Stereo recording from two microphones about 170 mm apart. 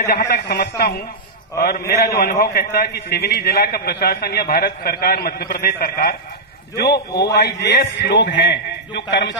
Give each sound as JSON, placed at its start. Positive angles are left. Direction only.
{"t": 0.3, "sound": "a man's voice", "side_deg": 70}
{"t": 6.8, "sound": "a man's voice", "side_deg": 75}